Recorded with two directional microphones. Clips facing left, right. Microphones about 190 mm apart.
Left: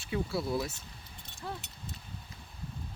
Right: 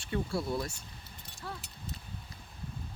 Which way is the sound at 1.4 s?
20° left (ahead or behind).